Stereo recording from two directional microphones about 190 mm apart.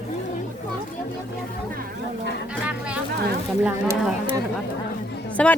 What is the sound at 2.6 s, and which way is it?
Music, 5° right (ahead or behind).